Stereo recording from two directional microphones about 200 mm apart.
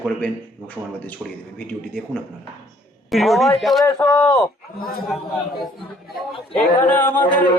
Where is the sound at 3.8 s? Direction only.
15° left (ahead or behind).